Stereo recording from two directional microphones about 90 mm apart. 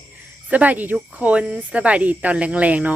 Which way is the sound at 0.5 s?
15° right (ahead or behind).